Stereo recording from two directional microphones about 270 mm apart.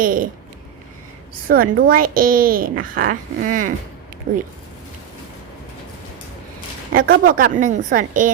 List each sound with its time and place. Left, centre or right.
0.0 s speech: right
1.5 s speech: right
6.9 s speech: right